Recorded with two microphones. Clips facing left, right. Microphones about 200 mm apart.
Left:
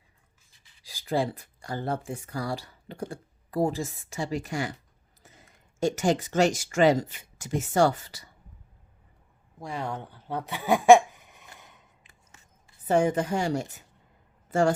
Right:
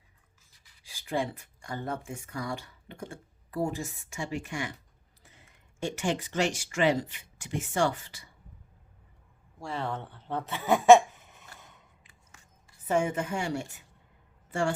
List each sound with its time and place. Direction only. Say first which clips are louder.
0.9 s speech: left 4 dB; 35° left (ahead or behind)
9.6 s a sound: left 1 dB; 15° left (ahead or behind)
12.9 s a woman's voice: left 5 dB; 35° left (ahead or behind)